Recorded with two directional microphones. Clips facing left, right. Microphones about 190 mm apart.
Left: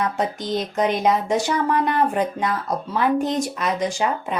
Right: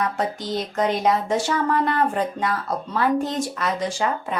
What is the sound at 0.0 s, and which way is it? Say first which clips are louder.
Speech: left 1 dB; 20° left (ahead or behind).